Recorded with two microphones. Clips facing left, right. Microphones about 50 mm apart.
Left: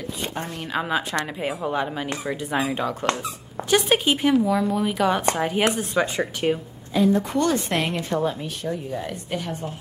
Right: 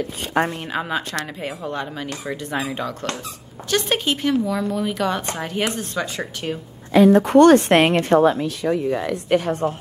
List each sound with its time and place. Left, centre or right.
0.7 s a woman's voice: centre
6.9 s a woman's voice: right
7.3 s a woman's voice: right
8.3 s speech: right
9.3 s a woman's voice: right